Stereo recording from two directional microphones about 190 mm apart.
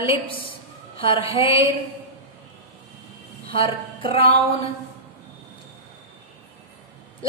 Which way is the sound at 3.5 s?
30° left (ahead or behind).